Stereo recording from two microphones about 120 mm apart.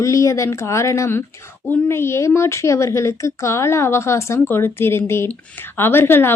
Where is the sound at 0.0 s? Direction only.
25° left (ahead or behind).